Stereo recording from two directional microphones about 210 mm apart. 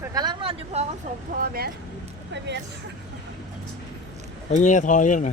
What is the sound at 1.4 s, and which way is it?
Speech, 45° right (ahead or behind).